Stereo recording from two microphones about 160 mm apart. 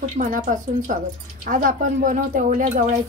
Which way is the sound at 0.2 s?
55° right (ahead or behind).